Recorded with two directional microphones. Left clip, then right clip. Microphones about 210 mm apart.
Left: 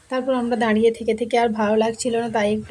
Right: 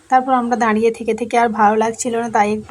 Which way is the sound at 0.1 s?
5° right (ahead or behind).